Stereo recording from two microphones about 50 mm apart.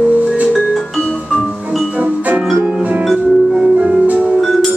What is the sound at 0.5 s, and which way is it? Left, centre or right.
Music, centre.